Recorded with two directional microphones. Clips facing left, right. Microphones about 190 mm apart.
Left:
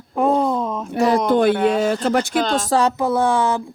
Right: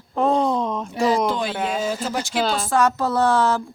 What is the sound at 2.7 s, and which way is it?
Speech, 30° left (ahead or behind).